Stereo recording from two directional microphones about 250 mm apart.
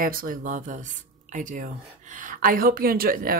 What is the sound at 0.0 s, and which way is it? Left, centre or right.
Speech, right.